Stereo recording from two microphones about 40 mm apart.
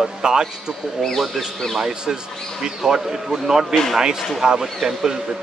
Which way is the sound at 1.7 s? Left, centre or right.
Centre.